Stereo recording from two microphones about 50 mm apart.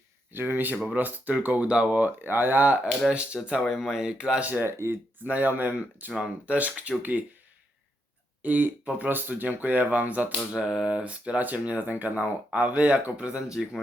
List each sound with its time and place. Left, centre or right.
0.3 s speech: right
1.6 s speech: centre
1.9 s speech: right
3.1 s speech: right
3.7 s speech: centre
4.2 s speech: right
4.6 s speech: right
5.2 s speech: right
6.1 s speech: right
8.4 s speech: right
10.5 s speech: centre; by 12.2 s right
12.2 s speech: right